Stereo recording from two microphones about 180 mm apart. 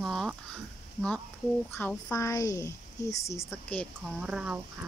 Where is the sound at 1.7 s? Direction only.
10° left (ahead or behind).